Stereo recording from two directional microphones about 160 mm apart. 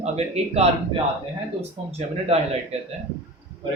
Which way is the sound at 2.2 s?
40° right (ahead or behind).